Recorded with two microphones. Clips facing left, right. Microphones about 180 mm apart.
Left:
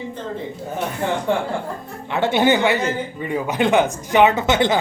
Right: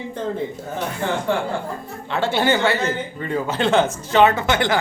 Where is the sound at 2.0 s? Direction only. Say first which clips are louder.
Left 3 dB; 20° left (ahead or behind).